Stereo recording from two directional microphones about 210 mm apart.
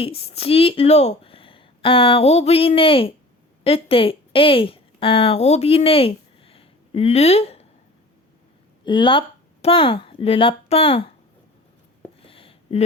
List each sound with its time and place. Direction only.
0.0 s a woman's voice: 30° left (ahead or behind)
8.8 s speech: 20° left (ahead or behind)
12.2 s a sound: 25° left (ahead or behind)